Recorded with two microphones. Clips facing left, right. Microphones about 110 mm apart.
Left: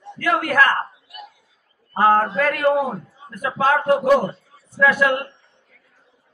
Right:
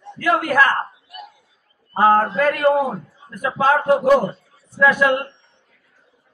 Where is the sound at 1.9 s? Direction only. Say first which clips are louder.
Right 1 dB; 10° right (ahead or behind).